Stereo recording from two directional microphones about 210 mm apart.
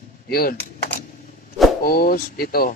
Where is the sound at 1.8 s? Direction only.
45° left (ahead or behind).